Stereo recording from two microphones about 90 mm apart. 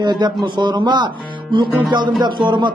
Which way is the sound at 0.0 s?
55° right (ahead or behind).